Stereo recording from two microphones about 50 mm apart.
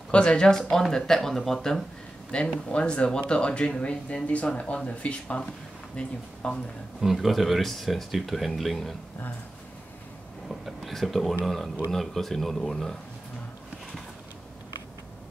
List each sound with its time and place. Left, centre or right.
0.1 s speech: left
2.3 s speech: left
7.0 s speech: centre
10.5 s speech: centre